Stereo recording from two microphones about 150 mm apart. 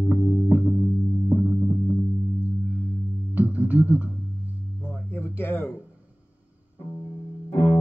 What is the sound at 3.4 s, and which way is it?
Music, 10° right (ahead or behind).